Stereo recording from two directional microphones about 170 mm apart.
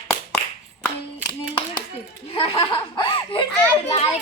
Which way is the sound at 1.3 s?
25° left (ahead or behind).